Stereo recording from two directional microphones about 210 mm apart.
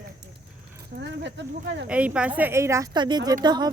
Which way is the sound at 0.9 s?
55° right (ahead or behind).